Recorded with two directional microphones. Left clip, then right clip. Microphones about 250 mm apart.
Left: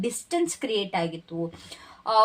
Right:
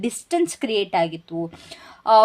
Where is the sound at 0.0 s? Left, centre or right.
Right.